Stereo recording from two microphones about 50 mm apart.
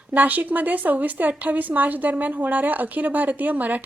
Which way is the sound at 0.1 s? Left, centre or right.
Right.